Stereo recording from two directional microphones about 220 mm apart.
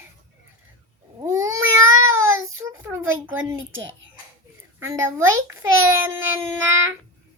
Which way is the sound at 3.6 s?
60° right (ahead or behind).